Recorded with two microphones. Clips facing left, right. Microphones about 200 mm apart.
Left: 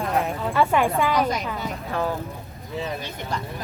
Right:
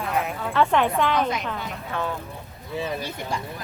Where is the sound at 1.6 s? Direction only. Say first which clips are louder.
Left 3 dB; 35° left (ahead or behind).